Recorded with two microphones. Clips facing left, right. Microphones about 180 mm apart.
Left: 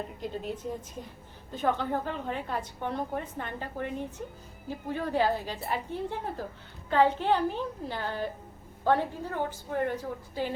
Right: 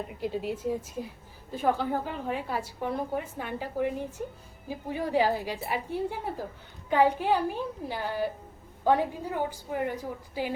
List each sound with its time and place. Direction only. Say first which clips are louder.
0.2 s a woman's voice: right 7 dB; 5° right (ahead or behind)